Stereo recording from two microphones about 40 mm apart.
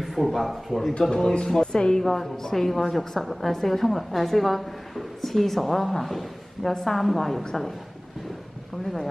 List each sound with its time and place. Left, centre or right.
0.0 s a woman's voice: centre
1.1 s speech: centre
2.0 s a woman's voice: centre